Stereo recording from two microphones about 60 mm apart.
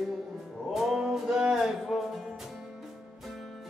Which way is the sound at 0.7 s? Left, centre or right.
Centre.